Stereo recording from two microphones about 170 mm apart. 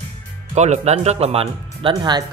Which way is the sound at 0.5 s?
40° right (ahead or behind).